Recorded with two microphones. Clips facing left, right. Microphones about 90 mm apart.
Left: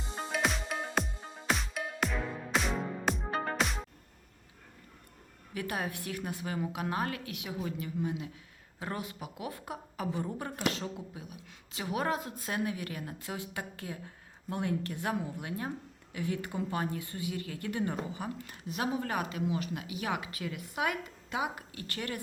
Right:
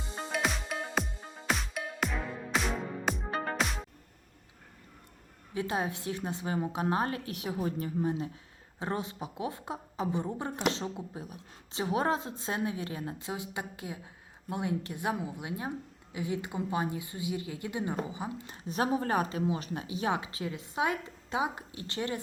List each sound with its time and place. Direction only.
0.3 s music: centre (ahead or behind)
5.5 s a woman's voice: 25° right (ahead or behind)